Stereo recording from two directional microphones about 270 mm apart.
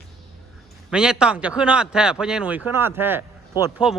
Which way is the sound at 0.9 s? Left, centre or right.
Centre.